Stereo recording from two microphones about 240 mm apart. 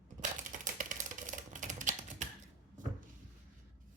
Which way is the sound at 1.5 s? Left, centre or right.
Right.